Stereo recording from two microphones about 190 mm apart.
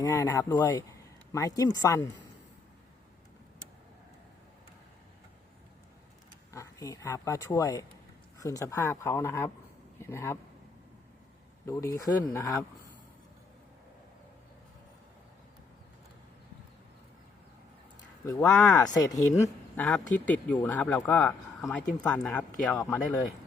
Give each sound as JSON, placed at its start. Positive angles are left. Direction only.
{"t": 0.0, "sound": "speech", "side_deg": 15}
{"t": 6.5, "sound": "speech", "side_deg": 15}
{"t": 11.6, "sound": "speech", "side_deg": 15}
{"t": 18.4, "sound": "speech", "side_deg": 0}
{"t": 18.8, "sound": "speech", "side_deg": 20}
{"t": 19.4, "sound": "speech", "side_deg": 10}